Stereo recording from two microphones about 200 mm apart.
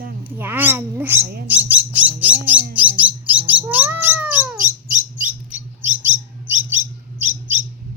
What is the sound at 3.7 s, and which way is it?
Cat, 10° right (ahead or behind).